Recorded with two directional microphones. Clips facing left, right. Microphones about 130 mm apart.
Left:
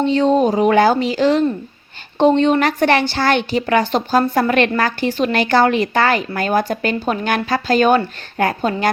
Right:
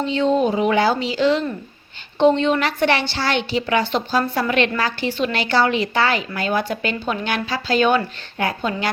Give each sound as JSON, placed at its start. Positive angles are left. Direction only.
{"t": 0.0, "sound": "a woman's voice", "side_deg": 40}